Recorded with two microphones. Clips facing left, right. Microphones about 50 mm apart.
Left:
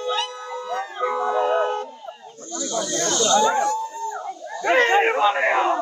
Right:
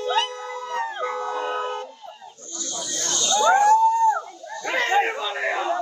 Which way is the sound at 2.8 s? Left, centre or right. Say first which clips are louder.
Left 6 dB; left.